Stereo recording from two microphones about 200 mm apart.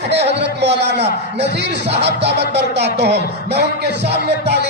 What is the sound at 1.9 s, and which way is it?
Speech, 60° right (ahead or behind).